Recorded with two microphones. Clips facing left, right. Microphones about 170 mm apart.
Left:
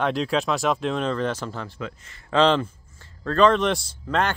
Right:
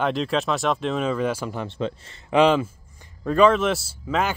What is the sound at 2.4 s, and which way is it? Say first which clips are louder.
Speech: right 2 dB; 10° right (ahead or behind).